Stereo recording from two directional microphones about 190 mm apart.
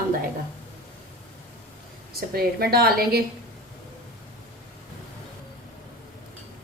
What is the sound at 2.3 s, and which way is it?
Speech, 50° right (ahead or behind).